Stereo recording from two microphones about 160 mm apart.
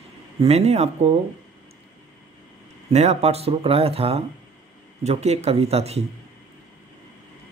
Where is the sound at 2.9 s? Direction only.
45° right (ahead or behind).